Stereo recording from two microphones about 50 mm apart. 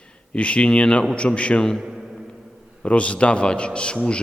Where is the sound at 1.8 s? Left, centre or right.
Centre.